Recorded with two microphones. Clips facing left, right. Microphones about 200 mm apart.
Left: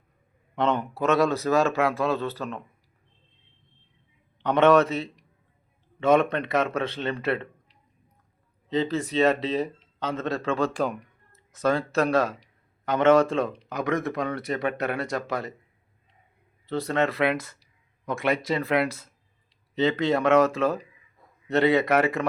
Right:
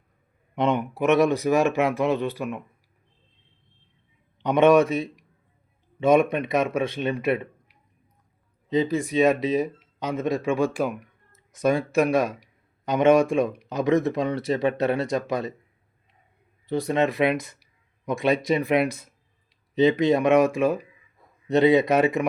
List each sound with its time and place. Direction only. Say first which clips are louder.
0.5 s speech: right 2 dB; 15° right (ahead or behind)
4.4 s speech: right 2 dB; 15° right (ahead or behind)
16.6 s speech: right 2 dB; 15° right (ahead or behind)